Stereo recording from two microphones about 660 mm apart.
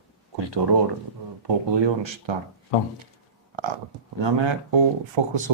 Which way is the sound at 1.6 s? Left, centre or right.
Right.